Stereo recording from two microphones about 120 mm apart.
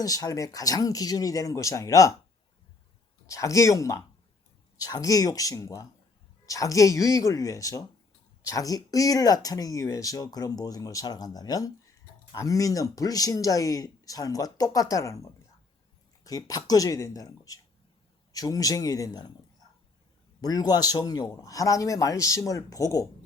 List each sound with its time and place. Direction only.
0.0 s speech: 30° left (ahead or behind)
3.2 s speech: 25° left (ahead or behind)
20.4 s speech: 35° left (ahead or behind)